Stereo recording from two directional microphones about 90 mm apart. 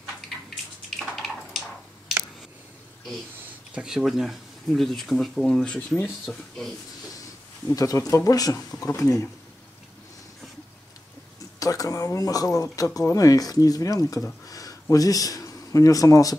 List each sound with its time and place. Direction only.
0.8 s a sound: 5° left (ahead or behind)
3.7 s speech: 5° right (ahead or behind)
6.3 s speech: 20° left (ahead or behind)
7.2 s speech: 40° left (ahead or behind)
11.6 s a sound: 40° left (ahead or behind)
12.7 s speech: 40° left (ahead or behind)